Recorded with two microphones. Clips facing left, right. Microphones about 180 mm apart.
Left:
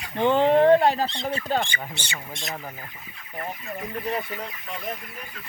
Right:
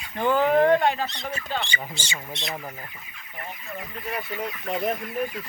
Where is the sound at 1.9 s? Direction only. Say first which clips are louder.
Right 1 dB; 60° left (ahead or behind).